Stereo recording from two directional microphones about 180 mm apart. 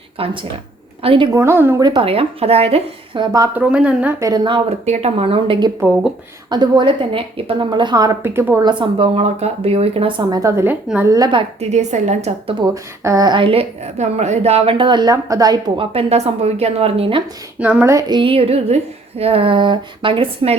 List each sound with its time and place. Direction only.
0.2 s a woman's voice: 30° right (ahead or behind)
1.3 s a woman's voice: 15° right (ahead or behind)
1.9 s a woman's voice: 30° right (ahead or behind)
3.5 s a woman's voice: 5° right (ahead or behind)
4.2 s a woman's voice: 25° right (ahead or behind)
8.8 s a woman's voice: 30° right (ahead or behind)
11.7 s a woman's voice: 40° right (ahead or behind)
12.7 s a woman's voice: 15° right (ahead or behind)
17.6 s a woman's voice: 10° right (ahead or behind); by 20.6 s 30° right (ahead or behind)